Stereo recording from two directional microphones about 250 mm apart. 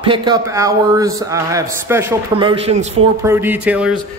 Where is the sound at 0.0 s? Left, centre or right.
Centre.